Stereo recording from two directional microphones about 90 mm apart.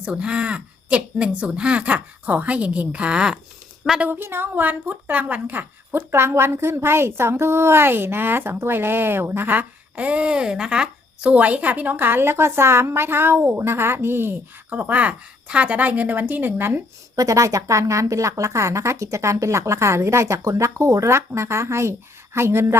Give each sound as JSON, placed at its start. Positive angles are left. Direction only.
{"t": 0.0, "sound": "speech", "side_deg": -15}
{"t": 4.0, "sound": "a woman's voice", "side_deg": -25}
{"t": 17.2, "sound": "a woman's voice", "side_deg": -40}